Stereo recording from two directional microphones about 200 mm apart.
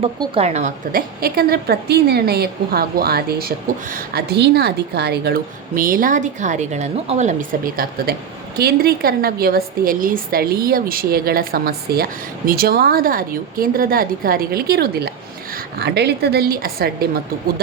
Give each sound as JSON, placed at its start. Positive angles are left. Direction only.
{"t": 0.0, "sound": "a woman's voice", "side_deg": -30}